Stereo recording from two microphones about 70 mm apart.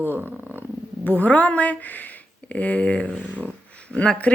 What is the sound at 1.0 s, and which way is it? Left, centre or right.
A woman's voice, left.